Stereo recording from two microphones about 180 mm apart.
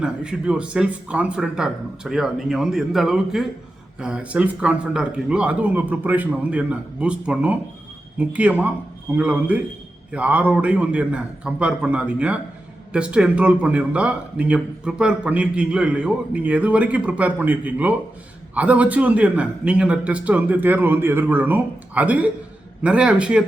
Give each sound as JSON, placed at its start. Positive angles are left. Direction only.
{"t": 0.0, "sound": "speech", "side_deg": -5}